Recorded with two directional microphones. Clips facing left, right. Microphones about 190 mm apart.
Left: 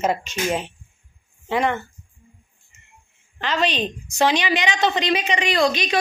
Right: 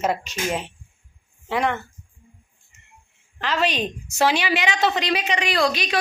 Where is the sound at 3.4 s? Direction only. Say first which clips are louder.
Left 1 dB; 5° right (ahead or behind).